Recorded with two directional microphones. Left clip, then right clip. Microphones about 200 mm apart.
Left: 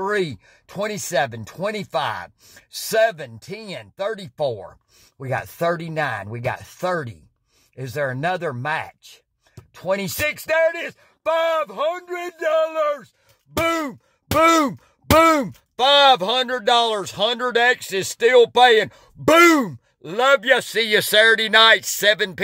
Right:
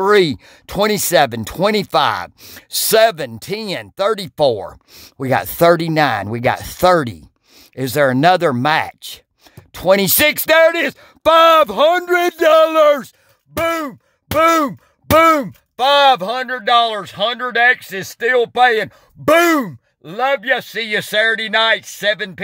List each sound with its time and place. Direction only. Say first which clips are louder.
0.0 s speech: right 10 dB; 45° right (ahead or behind)
13.6 s groan: right 3 dB; 10° right (ahead or behind)
16.3 s speech: right 3 dB; 5° left (ahead or behind)